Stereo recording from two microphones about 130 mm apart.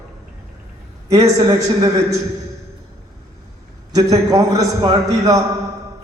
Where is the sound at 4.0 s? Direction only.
25° right (ahead or behind).